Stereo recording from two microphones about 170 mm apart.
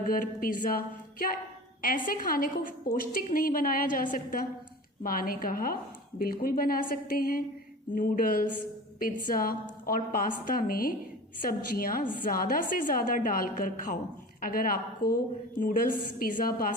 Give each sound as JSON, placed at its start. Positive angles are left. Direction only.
{"t": 0.1, "sound": "a woman's voice", "side_deg": 55}